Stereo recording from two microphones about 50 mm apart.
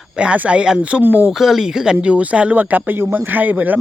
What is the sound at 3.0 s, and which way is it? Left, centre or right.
Speech, right.